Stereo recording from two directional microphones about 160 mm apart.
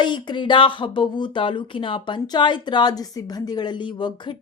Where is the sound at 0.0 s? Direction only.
30° left (ahead or behind).